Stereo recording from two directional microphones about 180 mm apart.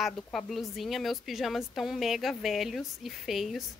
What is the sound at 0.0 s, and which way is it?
A woman's voice, centre (ahead or behind).